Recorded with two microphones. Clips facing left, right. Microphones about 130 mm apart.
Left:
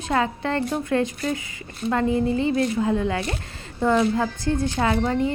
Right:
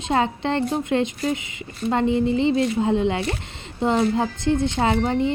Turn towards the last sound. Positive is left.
turn(degrees=-25)  # may be behind; listen again after turning